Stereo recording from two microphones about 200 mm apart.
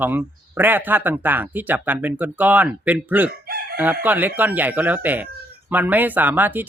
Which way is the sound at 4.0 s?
10° right (ahead or behind).